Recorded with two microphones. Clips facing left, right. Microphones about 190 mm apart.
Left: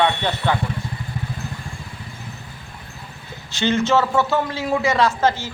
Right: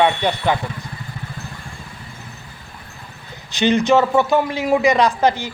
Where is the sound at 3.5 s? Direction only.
15° right (ahead or behind).